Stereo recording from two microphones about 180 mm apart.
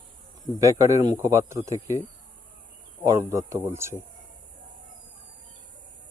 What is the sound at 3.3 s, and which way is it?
Speech, 15° right (ahead or behind).